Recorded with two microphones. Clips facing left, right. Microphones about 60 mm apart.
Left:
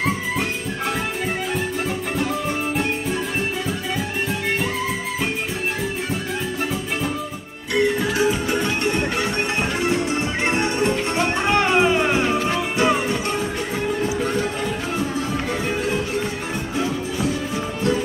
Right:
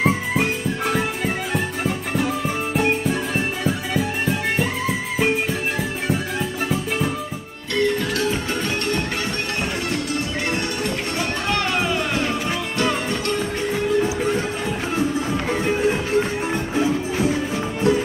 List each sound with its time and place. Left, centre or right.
0.9 s music: centre
7.7 s music: centre
15.3 s music: centre
15.8 s music: right